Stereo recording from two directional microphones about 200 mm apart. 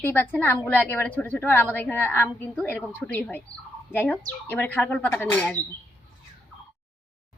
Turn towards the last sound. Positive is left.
turn(degrees=5)  # may be behind; listen again after turning